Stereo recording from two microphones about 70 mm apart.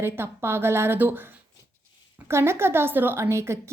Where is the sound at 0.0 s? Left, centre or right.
Right.